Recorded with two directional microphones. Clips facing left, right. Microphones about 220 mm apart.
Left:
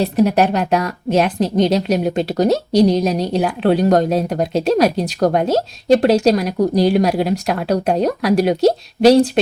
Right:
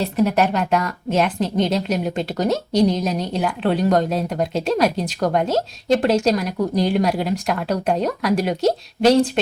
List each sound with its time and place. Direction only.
0.0 s a woman's voice: 35° left (ahead or behind)